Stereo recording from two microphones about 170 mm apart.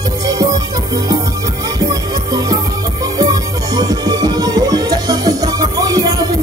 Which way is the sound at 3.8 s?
20° right (ahead or behind).